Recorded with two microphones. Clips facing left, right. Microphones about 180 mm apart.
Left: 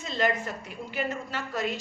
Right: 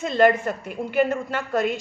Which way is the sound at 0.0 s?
55° right (ahead or behind).